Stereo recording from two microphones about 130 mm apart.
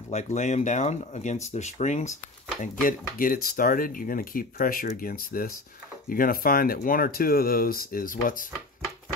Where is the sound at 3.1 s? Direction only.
90° left.